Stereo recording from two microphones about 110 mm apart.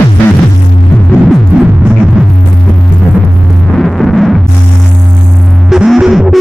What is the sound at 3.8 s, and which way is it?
Music, centre (ahead or behind).